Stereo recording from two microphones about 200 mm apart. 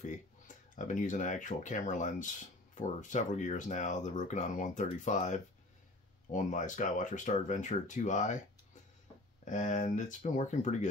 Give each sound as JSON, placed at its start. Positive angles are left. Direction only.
{"t": 0.7, "sound": "speech", "side_deg": 40}
{"t": 9.4, "sound": "speech", "side_deg": 35}